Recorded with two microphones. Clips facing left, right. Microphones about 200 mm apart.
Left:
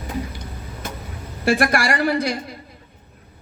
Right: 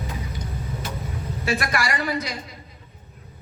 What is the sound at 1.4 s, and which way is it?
Speech, 65° left (ahead or behind).